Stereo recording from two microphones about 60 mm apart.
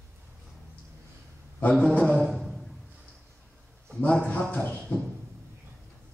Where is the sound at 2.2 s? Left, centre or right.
Centre.